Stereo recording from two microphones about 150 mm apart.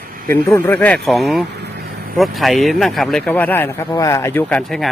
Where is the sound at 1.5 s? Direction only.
90° right.